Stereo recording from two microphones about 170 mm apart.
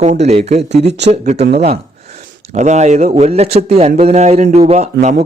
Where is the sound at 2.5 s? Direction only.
45° right (ahead or behind).